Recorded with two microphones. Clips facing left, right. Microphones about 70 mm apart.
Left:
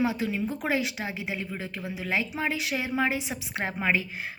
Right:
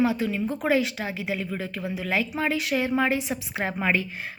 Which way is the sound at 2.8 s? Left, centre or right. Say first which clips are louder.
Right 2 dB; right.